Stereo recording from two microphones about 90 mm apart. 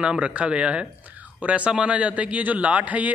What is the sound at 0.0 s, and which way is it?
A man's voice, 10° right (ahead or behind).